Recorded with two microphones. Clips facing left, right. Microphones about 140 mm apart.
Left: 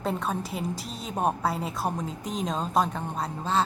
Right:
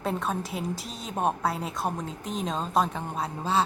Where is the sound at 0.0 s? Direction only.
Centre (ahead or behind).